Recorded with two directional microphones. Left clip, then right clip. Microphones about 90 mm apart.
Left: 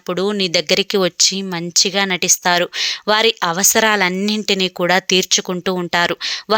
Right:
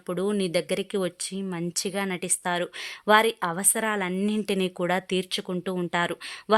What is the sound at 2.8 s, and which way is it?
Speech, 20° left (ahead or behind).